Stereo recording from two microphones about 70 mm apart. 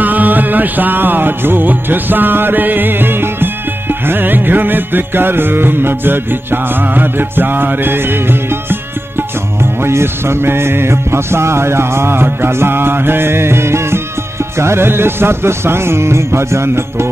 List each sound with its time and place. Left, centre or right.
0.0 s music: right